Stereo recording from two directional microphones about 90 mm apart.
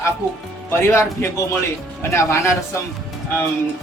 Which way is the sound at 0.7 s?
30° left (ahead or behind).